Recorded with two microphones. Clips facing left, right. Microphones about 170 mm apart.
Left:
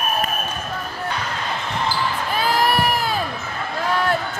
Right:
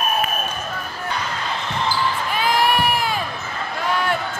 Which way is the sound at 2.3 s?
40° left (ahead or behind).